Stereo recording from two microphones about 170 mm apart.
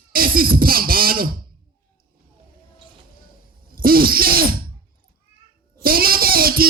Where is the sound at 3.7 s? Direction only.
60° right (ahead or behind).